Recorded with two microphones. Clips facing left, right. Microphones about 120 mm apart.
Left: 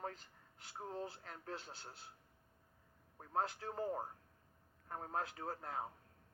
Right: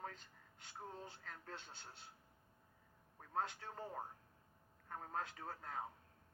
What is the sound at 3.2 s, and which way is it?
Speech, 35° left (ahead or behind).